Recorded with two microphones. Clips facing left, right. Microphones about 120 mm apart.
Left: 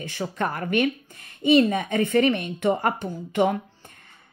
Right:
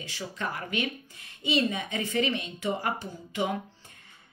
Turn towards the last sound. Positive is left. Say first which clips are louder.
# left 8 dB
turn(degrees=60)  # may be behind; listen again after turning